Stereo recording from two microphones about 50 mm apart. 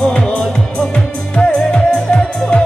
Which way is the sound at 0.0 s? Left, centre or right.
Centre.